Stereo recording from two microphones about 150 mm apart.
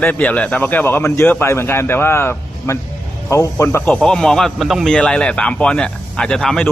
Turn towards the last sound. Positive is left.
turn(degrees=5)  # may be behind; listen again after turning